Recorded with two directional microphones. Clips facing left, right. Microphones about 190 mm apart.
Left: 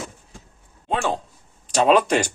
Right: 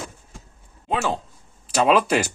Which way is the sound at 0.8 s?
5° right (ahead or behind).